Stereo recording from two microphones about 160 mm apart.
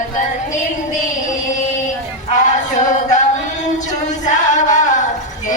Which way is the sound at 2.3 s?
50° left (ahead or behind).